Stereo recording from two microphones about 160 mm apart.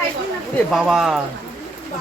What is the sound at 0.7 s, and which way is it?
Speech, 5° right (ahead or behind).